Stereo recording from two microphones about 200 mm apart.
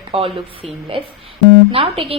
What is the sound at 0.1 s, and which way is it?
A woman's voice, 30° right (ahead or behind).